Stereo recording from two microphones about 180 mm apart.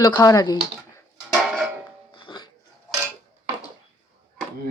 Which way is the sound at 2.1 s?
25° left (ahead or behind).